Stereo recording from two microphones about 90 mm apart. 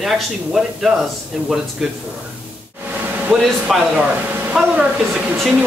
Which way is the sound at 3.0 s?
15° right (ahead or behind).